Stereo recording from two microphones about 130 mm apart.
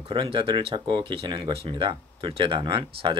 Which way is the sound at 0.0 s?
45° right (ahead or behind).